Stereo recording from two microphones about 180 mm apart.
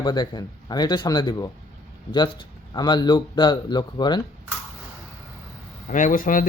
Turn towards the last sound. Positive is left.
turn(degrees=50)  # may be behind; listen again after turning